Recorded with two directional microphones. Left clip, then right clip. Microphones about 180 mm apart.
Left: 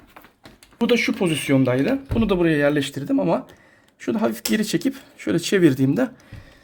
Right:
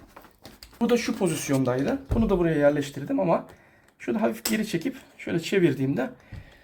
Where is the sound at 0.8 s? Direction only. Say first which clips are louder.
Left 4 dB; 45° left (ahead or behind).